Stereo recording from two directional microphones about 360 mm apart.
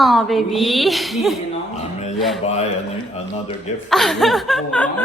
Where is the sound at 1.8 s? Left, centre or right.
Centre.